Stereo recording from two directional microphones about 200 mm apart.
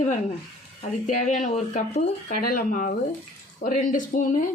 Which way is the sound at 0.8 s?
40° left (ahead or behind).